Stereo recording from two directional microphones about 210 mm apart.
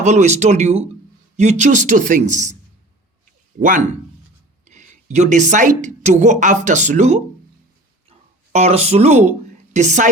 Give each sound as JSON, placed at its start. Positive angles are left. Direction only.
{"t": 0.0, "sound": "speech", "side_deg": -35}
{"t": 3.6, "sound": "a woman's voice", "side_deg": -40}
{"t": 8.5, "sound": "speech", "side_deg": -30}